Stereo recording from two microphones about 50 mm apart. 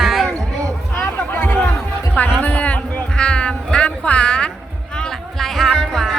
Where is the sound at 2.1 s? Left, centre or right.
Left.